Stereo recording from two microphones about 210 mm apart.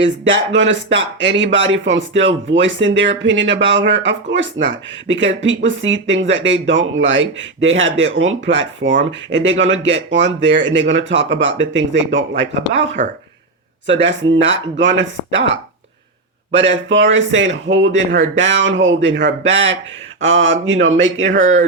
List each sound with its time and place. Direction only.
0.0 s speech: 60° right (ahead or behind)